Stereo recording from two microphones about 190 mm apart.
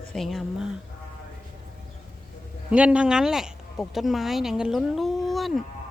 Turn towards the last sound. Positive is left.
turn(degrees=0)  # may be behind; listen again after turning